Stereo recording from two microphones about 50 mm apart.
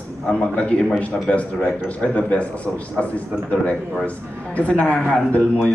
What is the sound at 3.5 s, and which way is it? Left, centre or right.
A man's voice, left.